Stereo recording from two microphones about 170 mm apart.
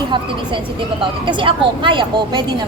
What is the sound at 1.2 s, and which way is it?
A woman's voice, 30° right (ahead or behind).